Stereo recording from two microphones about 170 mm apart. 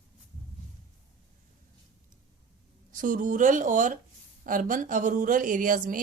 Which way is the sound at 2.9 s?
50° right (ahead or behind).